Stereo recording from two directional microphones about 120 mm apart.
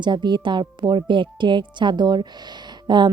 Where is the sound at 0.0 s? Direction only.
40° right (ahead or behind).